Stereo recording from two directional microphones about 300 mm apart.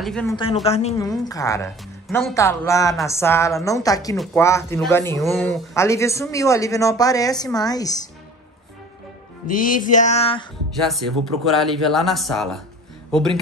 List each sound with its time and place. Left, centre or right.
0.0 s speech: centre
0.7 s speech: left
2.0 s speech: centre
9.5 s music: left
10.8 s speech: centre